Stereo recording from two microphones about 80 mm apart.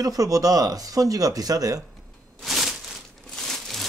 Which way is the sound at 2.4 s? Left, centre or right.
Centre.